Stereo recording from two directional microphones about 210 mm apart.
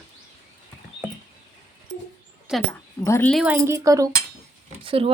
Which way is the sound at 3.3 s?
5° right (ahead or behind).